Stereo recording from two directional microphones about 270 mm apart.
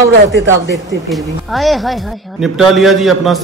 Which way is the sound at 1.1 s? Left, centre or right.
Centre.